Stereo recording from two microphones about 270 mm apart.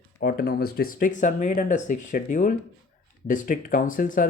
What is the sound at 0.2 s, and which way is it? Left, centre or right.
Speech, left.